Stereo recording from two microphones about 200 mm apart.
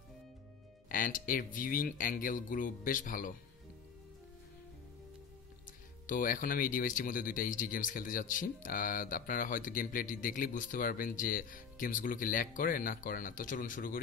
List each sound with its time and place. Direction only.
0.8 s speech: 40° left (ahead or behind)
6.0 s speech: 45° left (ahead or behind)